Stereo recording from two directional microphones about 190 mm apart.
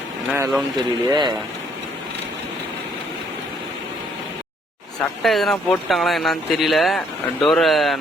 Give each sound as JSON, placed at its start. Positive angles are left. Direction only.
{"t": 0.3, "sound": "speech", "side_deg": -20}
{"t": 5.2, "sound": "speech", "side_deg": 0}